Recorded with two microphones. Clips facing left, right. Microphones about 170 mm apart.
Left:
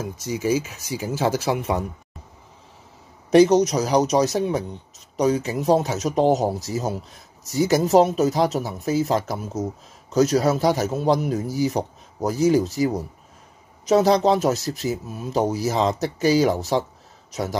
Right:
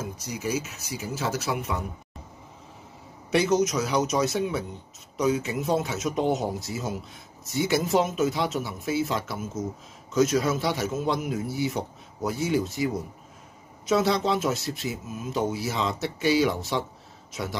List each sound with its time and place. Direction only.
0.2 s speech: 90° left
3.3 s a man's voice: 35° left (ahead or behind)